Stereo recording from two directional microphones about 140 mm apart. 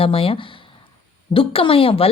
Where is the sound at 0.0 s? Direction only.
40° left (ahead or behind).